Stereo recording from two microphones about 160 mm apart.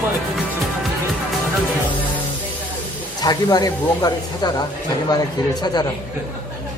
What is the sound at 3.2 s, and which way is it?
Speech, 25° left (ahead or behind).